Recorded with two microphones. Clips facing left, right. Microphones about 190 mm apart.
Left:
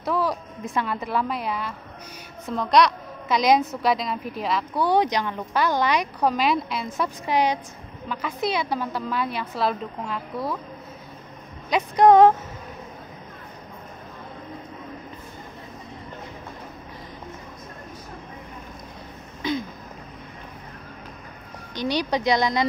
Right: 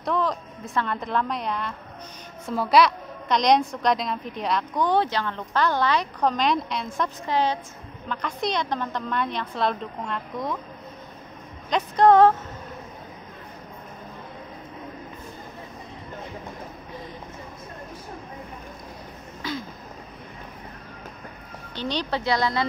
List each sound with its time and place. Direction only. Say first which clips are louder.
0.0 s a woman's voice: left 1 dB; 5° left (ahead or behind)
11.7 s a woman's voice: left 2 dB; 15° left (ahead or behind)
19.4 s throat clearing: left 5 dB; 20° left (ahead or behind)
21.7 s a woman's voice: left 3 dB; 10° left (ahead or behind)